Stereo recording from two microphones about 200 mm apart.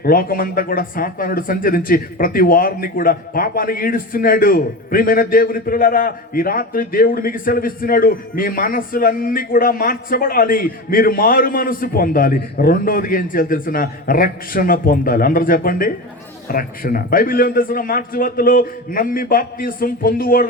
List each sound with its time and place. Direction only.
0.0 s speech: 45° left (ahead or behind)